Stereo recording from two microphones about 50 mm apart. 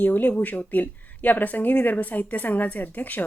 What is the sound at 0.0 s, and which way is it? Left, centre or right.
Speech, left.